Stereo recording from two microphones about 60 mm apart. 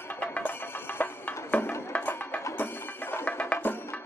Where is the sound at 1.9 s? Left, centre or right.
Left.